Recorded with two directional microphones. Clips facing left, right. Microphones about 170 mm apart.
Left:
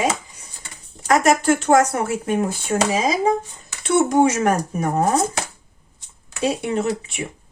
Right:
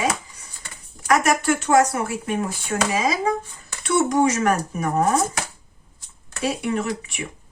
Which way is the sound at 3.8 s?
25° left (ahead or behind).